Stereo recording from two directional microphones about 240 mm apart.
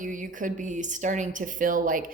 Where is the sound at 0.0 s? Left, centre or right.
Right.